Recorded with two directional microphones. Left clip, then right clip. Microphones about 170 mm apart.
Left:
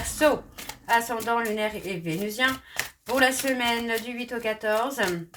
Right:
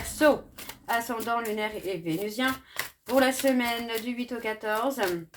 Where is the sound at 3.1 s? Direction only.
35° right (ahead or behind).